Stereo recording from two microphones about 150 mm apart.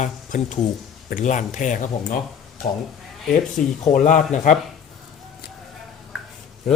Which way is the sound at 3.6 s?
60° left (ahead or behind).